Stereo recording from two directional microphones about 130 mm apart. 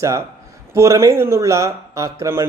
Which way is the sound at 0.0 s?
20° right (ahead or behind).